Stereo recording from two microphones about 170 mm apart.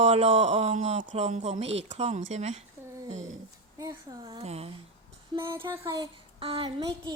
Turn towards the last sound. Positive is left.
turn(degrees=-30)  # may be behind; listen again after turning